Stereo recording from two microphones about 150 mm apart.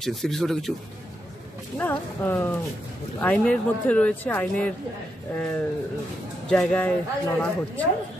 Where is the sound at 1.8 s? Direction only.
15° left (ahead or behind).